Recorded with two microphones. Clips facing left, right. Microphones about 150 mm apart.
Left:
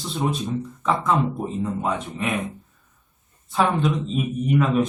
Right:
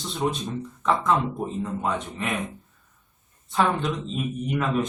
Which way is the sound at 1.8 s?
Centre (ahead or behind).